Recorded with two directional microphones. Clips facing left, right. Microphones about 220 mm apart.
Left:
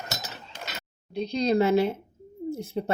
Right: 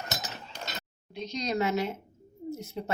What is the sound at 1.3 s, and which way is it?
Speech, 30° left (ahead or behind).